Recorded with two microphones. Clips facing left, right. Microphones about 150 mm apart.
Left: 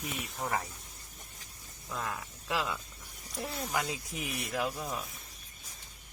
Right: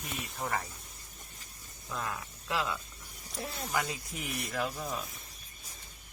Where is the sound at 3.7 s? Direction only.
15° left (ahead or behind).